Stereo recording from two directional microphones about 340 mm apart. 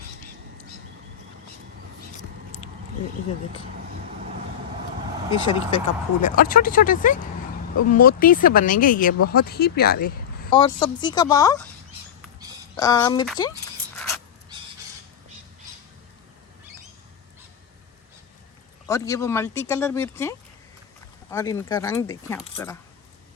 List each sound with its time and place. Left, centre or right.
5.5 s speech: centre
10.5 s speech: centre
12.7 s speech: centre
13.9 s a sound: centre
18.9 s speech: centre